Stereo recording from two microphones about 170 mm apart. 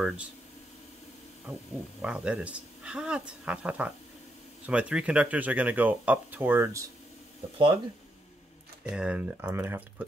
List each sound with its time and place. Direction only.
2.0 s speech: 5° right (ahead or behind)
7.5 s speech: 30° right (ahead or behind)
8.8 s speech: 5° right (ahead or behind)